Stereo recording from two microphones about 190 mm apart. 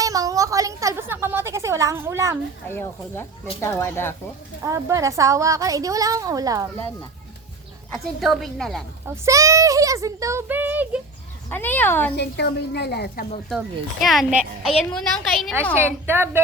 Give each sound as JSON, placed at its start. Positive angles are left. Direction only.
{"t": 0.0, "sound": "a sound", "side_deg": -20}
{"t": 2.6, "sound": "speech", "side_deg": 10}
{"t": 4.6, "sound": "a woman's voice", "side_deg": -15}
{"t": 7.9, "sound": "a woman's voice", "side_deg": 0}
{"t": 9.0, "sound": "a woman's voice", "side_deg": -15}
{"t": 11.4, "sound": "speech", "side_deg": 10}
{"t": 12.1, "sound": "a woman's voice", "side_deg": 60}
{"t": 13.5, "sound": "a woman's voice", "side_deg": 0}
{"t": 16.0, "sound": "a woman's voice", "side_deg": -10}